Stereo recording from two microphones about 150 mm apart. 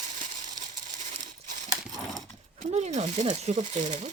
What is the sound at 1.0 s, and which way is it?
Crumpling, 50° right (ahead or behind).